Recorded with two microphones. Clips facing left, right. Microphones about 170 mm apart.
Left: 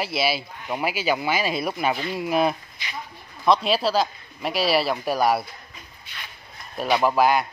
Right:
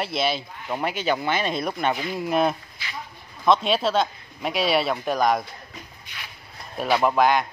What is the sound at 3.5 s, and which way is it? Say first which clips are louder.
Speech: even; centre (ahead or behind).